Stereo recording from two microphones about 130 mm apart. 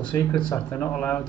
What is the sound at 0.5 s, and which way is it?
Speech, 15° left (ahead or behind).